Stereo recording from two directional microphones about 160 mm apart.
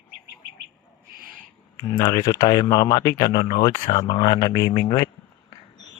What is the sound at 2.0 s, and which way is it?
Speech, 25° left (ahead or behind).